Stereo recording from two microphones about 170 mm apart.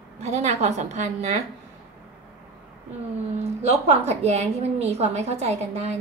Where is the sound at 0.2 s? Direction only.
40° right (ahead or behind).